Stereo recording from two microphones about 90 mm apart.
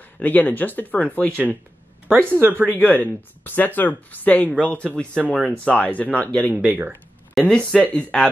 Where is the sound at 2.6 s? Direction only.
20° left (ahead or behind).